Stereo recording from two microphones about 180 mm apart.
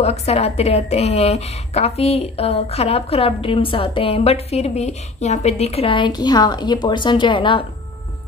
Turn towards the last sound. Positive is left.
turn(degrees=25)  # may be behind; listen again after turning